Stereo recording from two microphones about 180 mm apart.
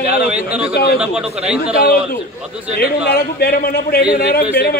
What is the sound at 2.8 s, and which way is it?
A man's voice, 60° left (ahead or behind).